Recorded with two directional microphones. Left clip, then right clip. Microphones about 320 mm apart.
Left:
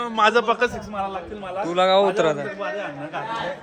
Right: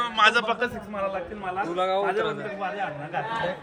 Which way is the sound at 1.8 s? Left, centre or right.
Left.